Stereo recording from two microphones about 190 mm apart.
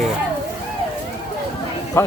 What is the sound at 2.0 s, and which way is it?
Speech, 15° left (ahead or behind).